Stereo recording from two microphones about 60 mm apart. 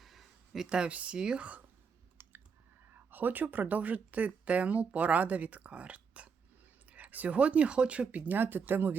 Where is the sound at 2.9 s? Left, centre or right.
Right.